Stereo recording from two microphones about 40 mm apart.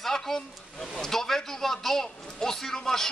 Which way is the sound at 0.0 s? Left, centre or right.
Centre.